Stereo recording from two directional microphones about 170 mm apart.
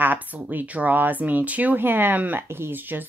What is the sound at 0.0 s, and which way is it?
Speech, 10° right (ahead or behind).